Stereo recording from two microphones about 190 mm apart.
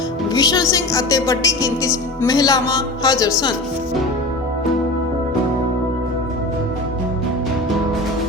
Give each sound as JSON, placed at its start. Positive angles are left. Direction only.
{"t": 0.3, "sound": "a woman's voice", "side_deg": 20}